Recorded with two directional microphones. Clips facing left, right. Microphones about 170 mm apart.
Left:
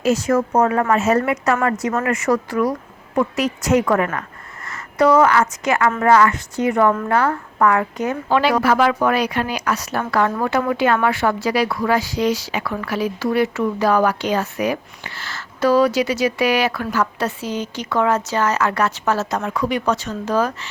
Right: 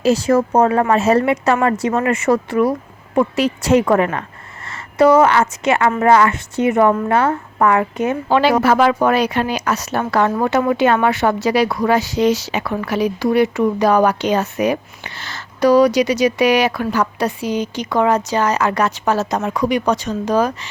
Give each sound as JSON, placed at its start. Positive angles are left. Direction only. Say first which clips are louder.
{"t": 0.0, "sound": "a woman's voice", "louder": "right 3 dB", "side_deg": -30}